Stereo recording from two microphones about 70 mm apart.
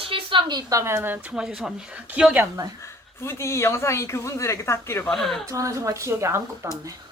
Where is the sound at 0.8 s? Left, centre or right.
Right.